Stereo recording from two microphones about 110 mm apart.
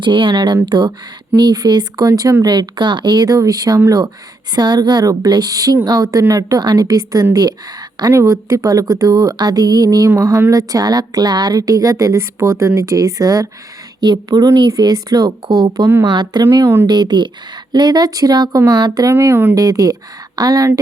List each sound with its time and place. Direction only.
0.0 s a woman's voice: 45° right (ahead or behind)
19.1 s speech: 25° right (ahead or behind)
19.5 s a woman's voice: 35° right (ahead or behind)